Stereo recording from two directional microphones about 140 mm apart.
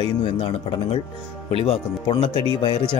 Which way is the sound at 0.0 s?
40° left (ahead or behind).